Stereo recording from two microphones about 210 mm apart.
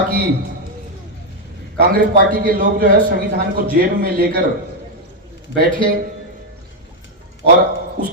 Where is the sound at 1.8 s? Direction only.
45° right (ahead or behind).